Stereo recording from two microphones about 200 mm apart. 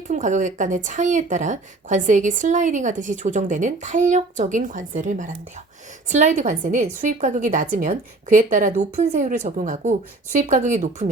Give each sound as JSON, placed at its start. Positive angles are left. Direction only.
{"t": 0.1, "sound": "speech", "side_deg": -40}